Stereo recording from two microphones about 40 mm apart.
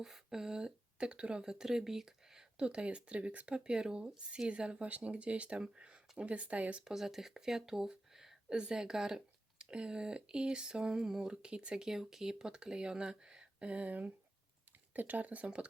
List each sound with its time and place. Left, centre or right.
0.0 s speech: centre; by 6.8 s right
6.8 s speech: centre
8.4 s speech: right
11.9 s speech: centre
13.7 s speech: right